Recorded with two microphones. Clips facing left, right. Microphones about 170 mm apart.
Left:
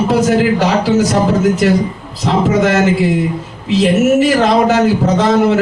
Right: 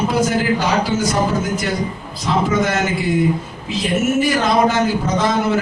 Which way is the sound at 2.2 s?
75° left (ahead or behind).